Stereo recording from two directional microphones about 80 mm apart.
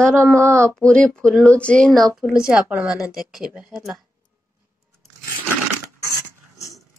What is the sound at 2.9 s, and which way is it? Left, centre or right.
Speech, centre.